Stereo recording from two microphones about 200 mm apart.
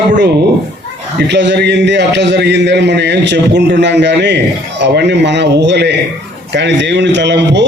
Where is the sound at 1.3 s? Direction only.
60° right (ahead or behind).